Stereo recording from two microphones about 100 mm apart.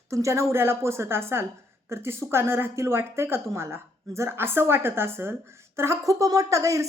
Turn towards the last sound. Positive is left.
turn(degrees=-30)  # may be behind; listen again after turning